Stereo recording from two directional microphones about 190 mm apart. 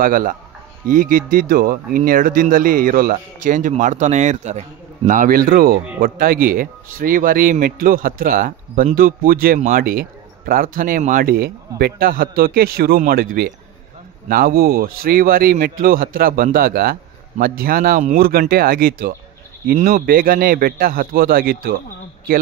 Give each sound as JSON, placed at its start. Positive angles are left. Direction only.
{"t": 0.0, "sound": "speech", "side_deg": -45}